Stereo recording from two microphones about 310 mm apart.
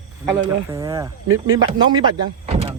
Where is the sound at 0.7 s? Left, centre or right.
Centre.